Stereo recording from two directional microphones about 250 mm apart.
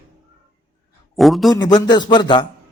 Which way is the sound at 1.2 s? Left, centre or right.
Centre.